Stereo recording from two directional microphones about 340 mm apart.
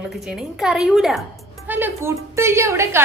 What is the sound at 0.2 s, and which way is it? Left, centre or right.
A woman's voice, centre.